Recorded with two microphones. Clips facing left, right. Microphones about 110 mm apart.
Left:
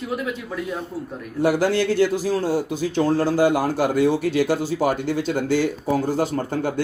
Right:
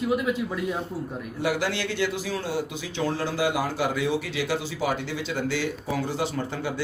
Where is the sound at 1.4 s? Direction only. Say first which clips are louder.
Left 8 dB; 45° left (ahead or behind).